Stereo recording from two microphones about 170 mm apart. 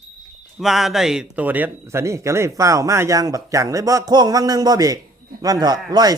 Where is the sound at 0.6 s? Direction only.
Centre (ahead or behind).